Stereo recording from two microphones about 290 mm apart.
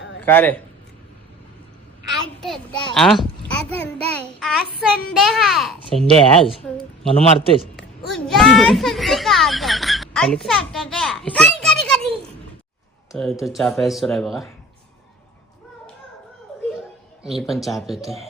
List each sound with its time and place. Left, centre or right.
0.2 s a man's voice: centre
2.4 s a child's voice: centre
7.1 s a man's voice: centre
7.8 s a child's voice: centre
17.2 s a child's voice: centre